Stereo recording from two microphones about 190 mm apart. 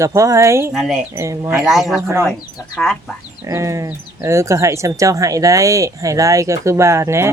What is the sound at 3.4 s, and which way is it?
Speech, 15° right (ahead or behind).